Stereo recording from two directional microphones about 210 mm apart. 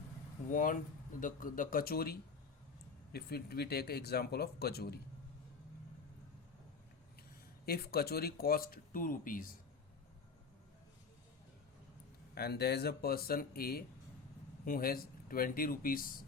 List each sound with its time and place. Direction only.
0.5 s speech: 40° left (ahead or behind)
7.6 s speech: 45° left (ahead or behind)
12.3 s speech: 50° left (ahead or behind)